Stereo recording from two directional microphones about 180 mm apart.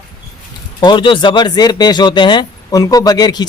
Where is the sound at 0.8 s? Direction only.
25° left (ahead or behind).